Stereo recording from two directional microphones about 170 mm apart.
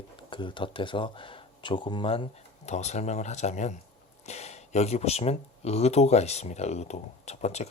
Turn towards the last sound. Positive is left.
turn(degrees=40)  # may be behind; listen again after turning